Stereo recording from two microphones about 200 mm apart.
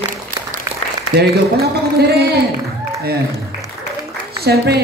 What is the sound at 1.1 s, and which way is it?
A woman's voice, 50° right (ahead or behind).